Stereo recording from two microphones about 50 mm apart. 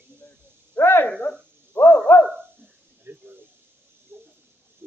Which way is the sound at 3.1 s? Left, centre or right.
Right.